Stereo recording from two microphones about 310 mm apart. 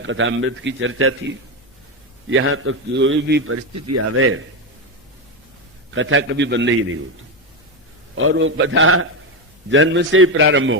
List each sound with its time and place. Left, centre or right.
0.0 s a man's voice: right
2.3 s a man's voice: right
3.8 s speech: right
5.9 s a man's voice: right
8.1 s a man's voice: right